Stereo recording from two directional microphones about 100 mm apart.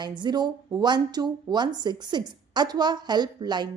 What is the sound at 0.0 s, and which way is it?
A woman's voice, 45° right (ahead or behind).